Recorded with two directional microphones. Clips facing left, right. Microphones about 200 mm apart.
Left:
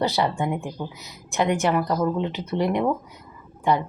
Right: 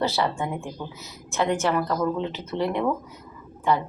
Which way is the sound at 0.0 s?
15° left (ahead or behind).